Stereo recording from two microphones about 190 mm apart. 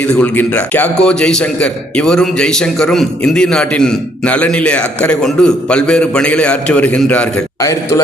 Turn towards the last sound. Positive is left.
turn(degrees=15)  # may be behind; listen again after turning